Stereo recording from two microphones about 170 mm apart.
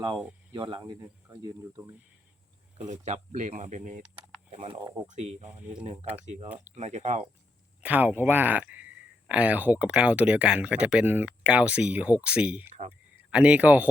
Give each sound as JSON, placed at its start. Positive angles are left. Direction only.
{"t": 0.5, "sound": "speech", "side_deg": -25}
{"t": 2.7, "sound": "speech", "side_deg": -45}
{"t": 4.1, "sound": "speech", "side_deg": -35}
{"t": 7.8, "sound": "speech", "side_deg": -10}